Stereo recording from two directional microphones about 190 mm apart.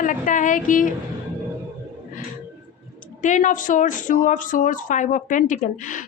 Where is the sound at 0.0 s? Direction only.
45° left (ahead or behind).